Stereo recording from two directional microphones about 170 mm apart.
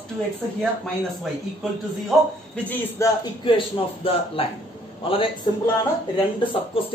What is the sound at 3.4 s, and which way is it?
A man's voice, 30° left (ahead or behind).